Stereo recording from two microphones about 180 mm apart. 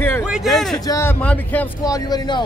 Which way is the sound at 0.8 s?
15° left (ahead or behind).